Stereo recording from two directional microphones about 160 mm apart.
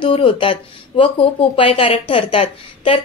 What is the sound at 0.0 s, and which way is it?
A woman's voice, 35° left (ahead or behind).